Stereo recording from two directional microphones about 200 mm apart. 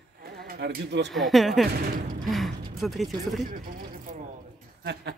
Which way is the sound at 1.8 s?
45° right (ahead or behind).